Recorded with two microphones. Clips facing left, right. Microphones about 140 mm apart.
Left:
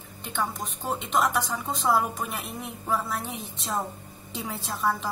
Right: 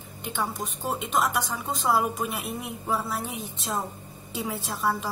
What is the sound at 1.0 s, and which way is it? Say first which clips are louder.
A woman's voice: left 1 dB; 5° right (ahead or behind).